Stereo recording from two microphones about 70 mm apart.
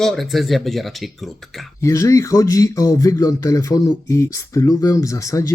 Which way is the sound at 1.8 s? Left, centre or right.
Left.